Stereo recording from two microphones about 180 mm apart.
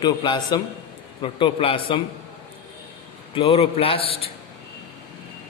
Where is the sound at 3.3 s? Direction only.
30° left (ahead or behind).